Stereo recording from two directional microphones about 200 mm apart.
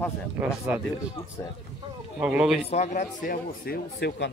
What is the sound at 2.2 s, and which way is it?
Speech, 5° right (ahead or behind).